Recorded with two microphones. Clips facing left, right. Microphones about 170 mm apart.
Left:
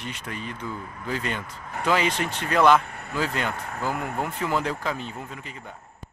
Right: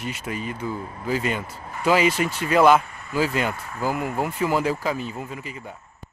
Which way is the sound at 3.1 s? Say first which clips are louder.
Right 4 dB; 5° right (ahead or behind).